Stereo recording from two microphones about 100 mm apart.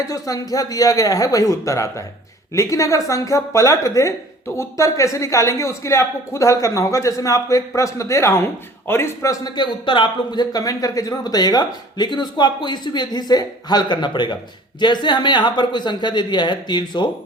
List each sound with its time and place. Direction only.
0.0 s a woman's voice: 35° left (ahead or behind)
9.3 s a man's voice: 45° left (ahead or behind)